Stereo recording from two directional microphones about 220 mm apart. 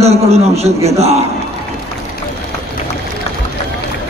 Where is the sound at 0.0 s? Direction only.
30° right (ahead or behind).